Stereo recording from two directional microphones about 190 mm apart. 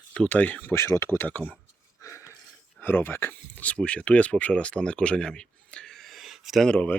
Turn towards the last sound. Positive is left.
turn(degrees=5)  # may be behind; listen again after turning